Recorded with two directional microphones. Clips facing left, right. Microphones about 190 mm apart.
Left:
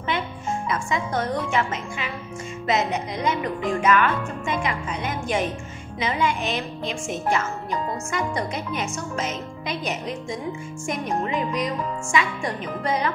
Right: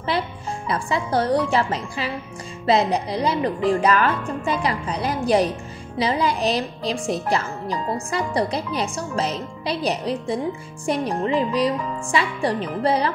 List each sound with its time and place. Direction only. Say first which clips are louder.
0.0 s a woman's voice: right 2 dB; 35° right (ahead or behind)